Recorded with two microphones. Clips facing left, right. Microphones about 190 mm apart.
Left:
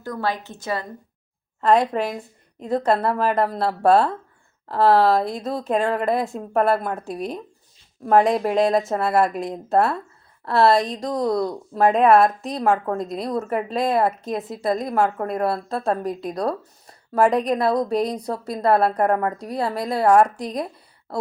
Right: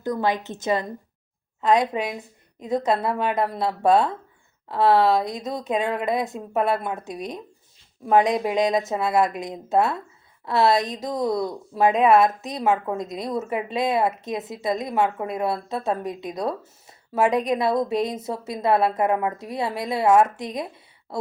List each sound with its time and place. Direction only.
0.0 s a woman's voice: 20° right (ahead or behind)
1.6 s a woman's voice: centre (ahead or behind)